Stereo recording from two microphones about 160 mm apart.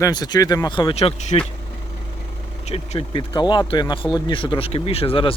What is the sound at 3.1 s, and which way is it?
Speech, 30° left (ahead or behind).